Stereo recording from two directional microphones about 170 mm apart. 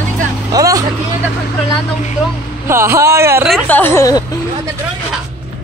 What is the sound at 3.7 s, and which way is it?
Speech, 10° left (ahead or behind).